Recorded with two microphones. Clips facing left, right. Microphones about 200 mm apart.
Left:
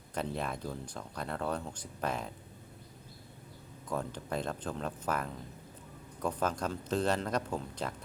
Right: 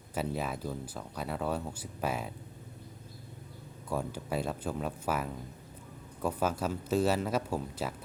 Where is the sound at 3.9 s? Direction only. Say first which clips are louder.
Right 2 dB; 10° right (ahead or behind).